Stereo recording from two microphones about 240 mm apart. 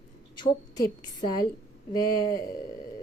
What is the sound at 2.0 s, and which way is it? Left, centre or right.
Speech, centre.